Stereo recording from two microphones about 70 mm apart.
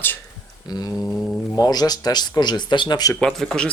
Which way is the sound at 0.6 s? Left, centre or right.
Left.